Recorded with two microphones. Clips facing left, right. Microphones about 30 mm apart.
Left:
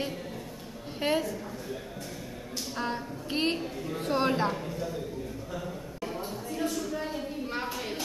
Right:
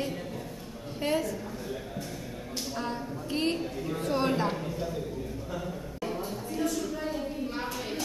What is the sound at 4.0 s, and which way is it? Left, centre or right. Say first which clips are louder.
Speech: left 1 dB; centre.